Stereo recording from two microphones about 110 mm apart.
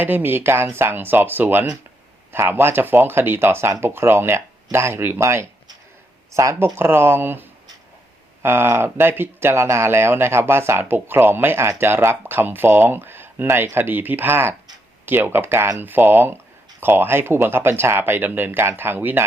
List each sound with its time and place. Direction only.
0.0 s speech: 15° right (ahead or behind)